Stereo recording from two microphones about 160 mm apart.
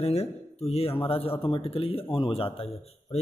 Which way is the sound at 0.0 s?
40° left (ahead or behind).